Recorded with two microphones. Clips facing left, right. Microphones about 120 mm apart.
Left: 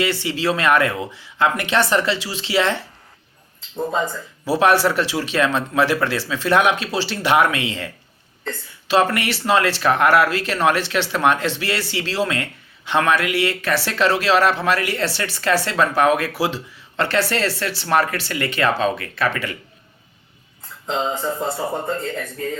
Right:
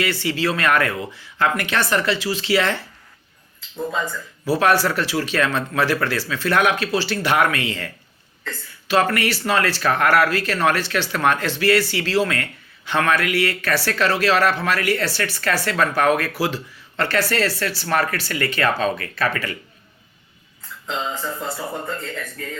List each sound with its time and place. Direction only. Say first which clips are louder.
0.0 s speech: left 1 dB; 25° left (ahead or behind)
20.8 s speech: left 4 dB; 30° left (ahead or behind)